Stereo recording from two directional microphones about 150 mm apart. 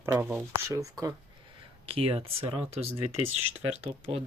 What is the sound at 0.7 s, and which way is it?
Speech, 25° right (ahead or behind).